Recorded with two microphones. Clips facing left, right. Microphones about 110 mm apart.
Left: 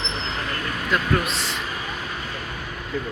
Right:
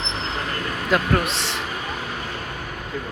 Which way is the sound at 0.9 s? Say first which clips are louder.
Right 2 dB; 70° right (ahead or behind).